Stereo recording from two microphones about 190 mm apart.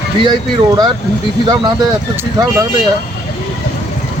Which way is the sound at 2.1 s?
15° right (ahead or behind).